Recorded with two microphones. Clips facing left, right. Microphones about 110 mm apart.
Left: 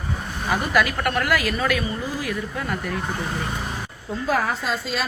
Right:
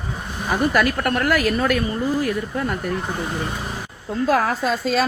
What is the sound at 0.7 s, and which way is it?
Speech, 45° right (ahead or behind).